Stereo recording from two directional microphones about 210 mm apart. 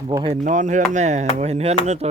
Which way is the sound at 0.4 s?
35° right (ahead or behind).